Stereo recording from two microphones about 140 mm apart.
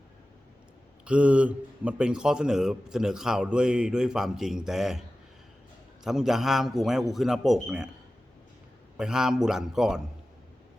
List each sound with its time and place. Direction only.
1.0 s speech: 10° right (ahead or behind)
6.1 s speech: 5° right (ahead or behind)
9.0 s speech: 5° right (ahead or behind)